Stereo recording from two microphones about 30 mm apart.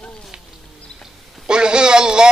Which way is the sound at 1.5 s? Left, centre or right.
Right.